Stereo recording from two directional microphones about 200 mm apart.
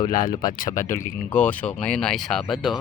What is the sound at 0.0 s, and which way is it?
Speech, 20° left (ahead or behind).